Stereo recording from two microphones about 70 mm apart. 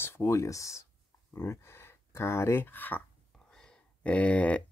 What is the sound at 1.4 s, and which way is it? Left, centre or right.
Speech, left.